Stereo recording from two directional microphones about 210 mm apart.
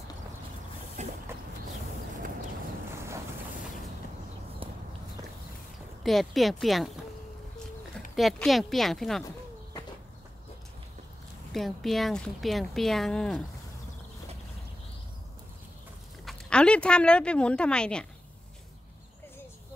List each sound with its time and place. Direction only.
1.0 s a sound: 35° right (ahead or behind)
6.0 s speech: centre (ahead or behind)
8.2 s speech: centre (ahead or behind)
11.5 s speech: centre (ahead or behind)
16.3 s a woman's voice: 5° left (ahead or behind)